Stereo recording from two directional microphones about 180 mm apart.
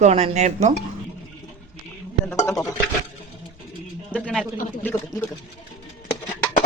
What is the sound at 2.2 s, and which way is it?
Speech, 15° left (ahead or behind).